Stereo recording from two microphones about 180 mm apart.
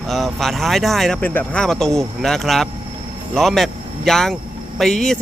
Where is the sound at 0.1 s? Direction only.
Centre (ahead or behind).